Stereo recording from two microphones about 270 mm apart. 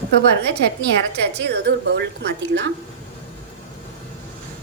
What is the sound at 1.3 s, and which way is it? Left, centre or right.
A woman's voice, right.